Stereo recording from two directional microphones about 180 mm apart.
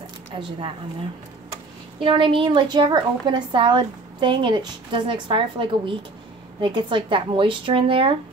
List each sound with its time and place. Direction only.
0.4 s a woman's voice: 30° right (ahead or behind)
2.0 s a woman's voice: 30° right (ahead or behind)